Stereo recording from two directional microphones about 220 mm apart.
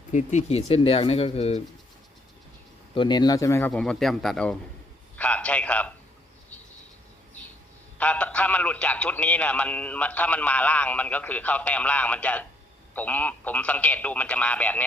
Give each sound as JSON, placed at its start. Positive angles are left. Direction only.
{"t": 0.1, "sound": "speech", "side_deg": 30}
{"t": 2.9, "sound": "a man's voice", "side_deg": 20}
{"t": 5.1, "sound": "a sound", "side_deg": 5}
{"t": 7.9, "sound": "a man's voice", "side_deg": 5}